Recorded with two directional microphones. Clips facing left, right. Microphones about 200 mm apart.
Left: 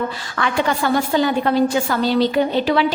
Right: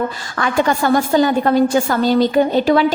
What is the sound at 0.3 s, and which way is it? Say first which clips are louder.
A woman's voice: right 3 dB; 45° right (ahead or behind).